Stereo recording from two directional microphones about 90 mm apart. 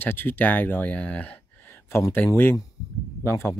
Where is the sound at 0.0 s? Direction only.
25° left (ahead or behind).